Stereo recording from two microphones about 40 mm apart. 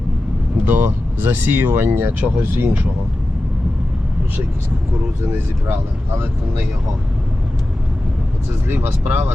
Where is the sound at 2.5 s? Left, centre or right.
Right.